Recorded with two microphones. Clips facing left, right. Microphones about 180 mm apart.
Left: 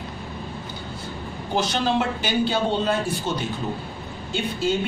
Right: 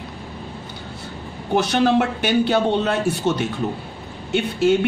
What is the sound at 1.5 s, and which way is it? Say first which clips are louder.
A woman's voice: right 6 dB; 60° right (ahead or behind).